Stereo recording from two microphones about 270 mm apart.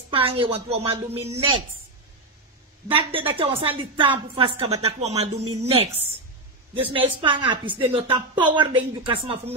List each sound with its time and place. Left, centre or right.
0.1 s a woman's voice: right
2.9 s a woman's voice: centre